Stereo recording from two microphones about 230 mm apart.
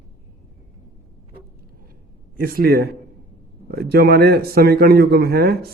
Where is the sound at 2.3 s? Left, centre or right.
Right.